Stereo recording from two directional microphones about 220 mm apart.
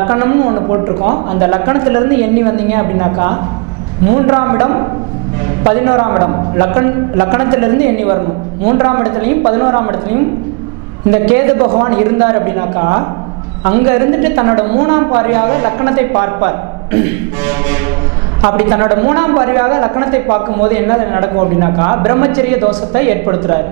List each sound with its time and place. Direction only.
0.0 s a woman's voice: 15° right (ahead or behind)